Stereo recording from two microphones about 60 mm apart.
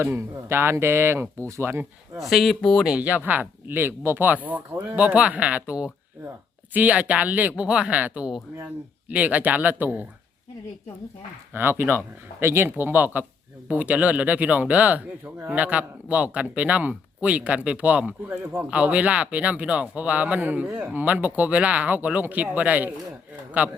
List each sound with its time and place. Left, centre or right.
0.0 s speech: right
2.1 s speech: centre
2.6 s speech: centre
3.0 s speech: right
3.7 s speech: right
11.5 s speech: right